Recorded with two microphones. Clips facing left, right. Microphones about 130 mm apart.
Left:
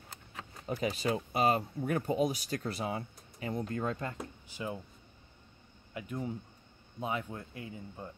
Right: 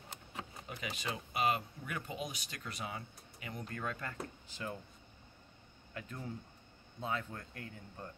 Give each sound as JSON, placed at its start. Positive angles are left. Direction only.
{"t": 0.7, "sound": "speech", "side_deg": 35}
{"t": 5.9, "sound": "speech", "side_deg": 15}